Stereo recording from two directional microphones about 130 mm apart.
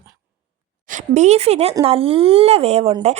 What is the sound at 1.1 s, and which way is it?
A woman's voice, 60° right (ahead or behind).